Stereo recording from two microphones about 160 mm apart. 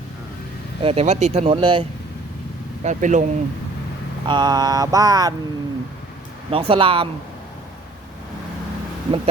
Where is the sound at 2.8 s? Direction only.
50° right (ahead or behind).